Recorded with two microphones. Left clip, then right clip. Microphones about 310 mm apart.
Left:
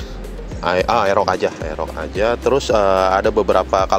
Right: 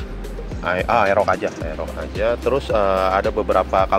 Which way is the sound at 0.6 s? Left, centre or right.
Left.